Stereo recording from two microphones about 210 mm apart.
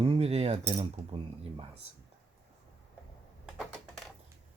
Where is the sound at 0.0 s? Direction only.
25° right (ahead or behind).